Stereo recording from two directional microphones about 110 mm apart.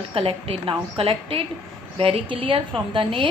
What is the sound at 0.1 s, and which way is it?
A woman's voice, 55° right (ahead or behind).